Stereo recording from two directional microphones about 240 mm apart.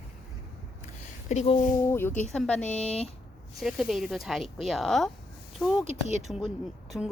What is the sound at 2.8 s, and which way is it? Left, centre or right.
Speech, left.